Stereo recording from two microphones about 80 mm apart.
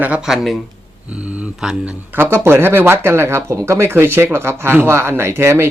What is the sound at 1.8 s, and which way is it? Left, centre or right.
Speech, right.